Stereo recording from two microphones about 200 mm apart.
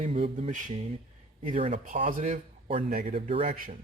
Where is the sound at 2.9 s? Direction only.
45° right (ahead or behind).